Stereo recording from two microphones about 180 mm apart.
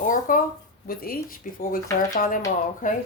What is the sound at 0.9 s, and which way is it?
Speech, 55° left (ahead or behind).